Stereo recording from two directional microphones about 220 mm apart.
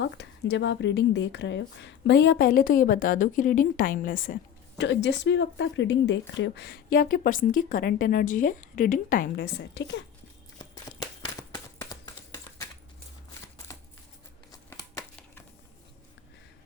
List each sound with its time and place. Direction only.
0.0 s a woman's voice: 50° left (ahead or behind)
4.8 s speech: 55° left (ahead or behind)
11.5 s a sound: 20° left (ahead or behind)
14.7 s crumpling: 15° left (ahead or behind)